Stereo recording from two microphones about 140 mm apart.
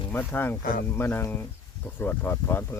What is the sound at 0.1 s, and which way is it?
Speech, 15° left (ahead or behind).